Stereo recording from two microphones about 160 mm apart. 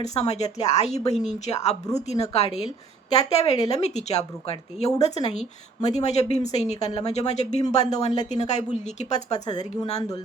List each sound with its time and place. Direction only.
0.0 s a woman's voice: 45° left (ahead or behind)
3.2 s a woman's voice: 40° left (ahead or behind)